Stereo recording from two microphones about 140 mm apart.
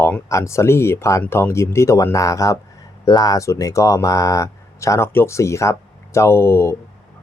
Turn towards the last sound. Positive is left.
turn(degrees=15)  # may be behind; listen again after turning